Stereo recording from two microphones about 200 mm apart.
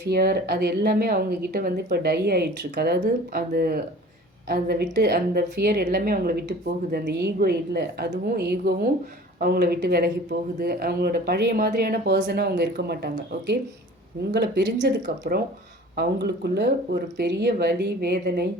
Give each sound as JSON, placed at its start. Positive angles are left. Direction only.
{"t": 0.0, "sound": "a woman's voice", "side_deg": -50}
{"t": 14.3, "sound": "speech", "side_deg": -55}